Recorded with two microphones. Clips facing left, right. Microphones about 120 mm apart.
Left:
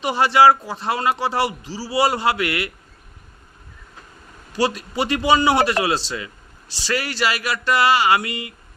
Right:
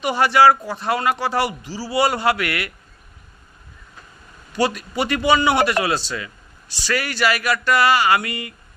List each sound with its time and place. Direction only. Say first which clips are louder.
0.0 s a man's voice: even; 30° left (ahead or behind)
4.5 s a man's voice: even; 30° left (ahead or behind)